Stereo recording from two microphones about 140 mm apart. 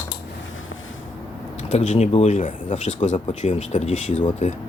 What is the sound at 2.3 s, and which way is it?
Speech, 65° left (ahead or behind).